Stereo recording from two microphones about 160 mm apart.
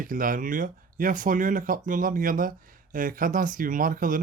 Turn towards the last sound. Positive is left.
turn(degrees=-60)  # may be behind; listen again after turning